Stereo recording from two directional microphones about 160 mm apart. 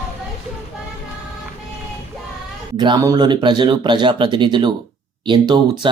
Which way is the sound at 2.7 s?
30° right (ahead or behind).